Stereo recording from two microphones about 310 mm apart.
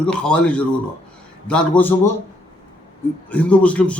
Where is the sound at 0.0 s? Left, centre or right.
Centre.